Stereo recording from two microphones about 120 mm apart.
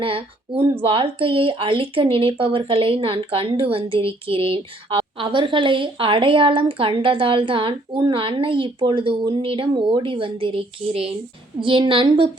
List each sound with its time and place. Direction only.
0.0 s speech: 50° right (ahead or behind)